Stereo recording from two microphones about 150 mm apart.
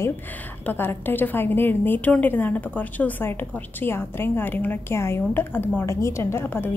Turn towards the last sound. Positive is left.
turn(degrees=15)  # may be behind; listen again after turning